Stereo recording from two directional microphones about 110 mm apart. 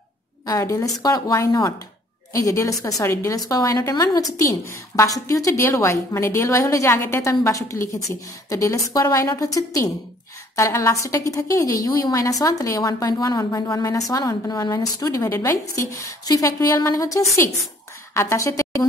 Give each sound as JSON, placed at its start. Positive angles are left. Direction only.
{"t": 0.5, "sound": "a woman's voice", "side_deg": 30}